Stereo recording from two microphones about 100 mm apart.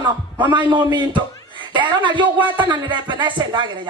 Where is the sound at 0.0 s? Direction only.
50° right (ahead or behind).